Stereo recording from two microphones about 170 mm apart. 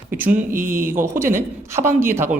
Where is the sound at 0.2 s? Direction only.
10° right (ahead or behind).